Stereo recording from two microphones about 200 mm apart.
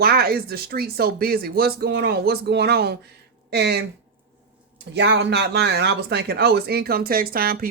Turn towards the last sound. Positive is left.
turn(degrees=-45)  # may be behind; listen again after turning